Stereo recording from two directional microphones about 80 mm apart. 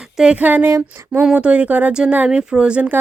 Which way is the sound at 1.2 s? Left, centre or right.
Centre.